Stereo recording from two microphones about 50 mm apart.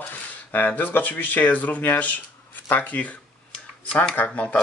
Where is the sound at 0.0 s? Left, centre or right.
Left.